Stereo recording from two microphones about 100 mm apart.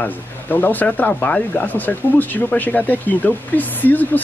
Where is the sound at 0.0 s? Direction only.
20° left (ahead or behind).